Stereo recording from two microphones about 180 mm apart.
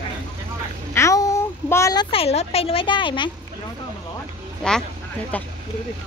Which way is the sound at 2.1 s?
35° left (ahead or behind).